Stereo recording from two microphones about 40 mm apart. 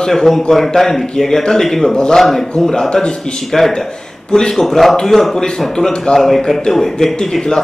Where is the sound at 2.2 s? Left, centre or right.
Centre.